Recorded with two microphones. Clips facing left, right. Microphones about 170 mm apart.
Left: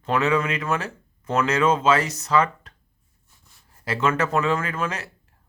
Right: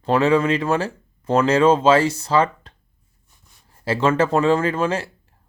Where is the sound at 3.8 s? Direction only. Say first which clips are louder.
Right 5 dB; 30° right (ahead or behind).